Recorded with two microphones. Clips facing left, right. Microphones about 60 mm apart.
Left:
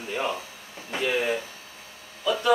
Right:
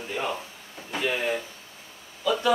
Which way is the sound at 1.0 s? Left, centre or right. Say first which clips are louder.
Left 2 dB; centre.